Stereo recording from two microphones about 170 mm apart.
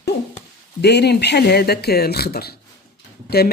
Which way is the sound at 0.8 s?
80° left.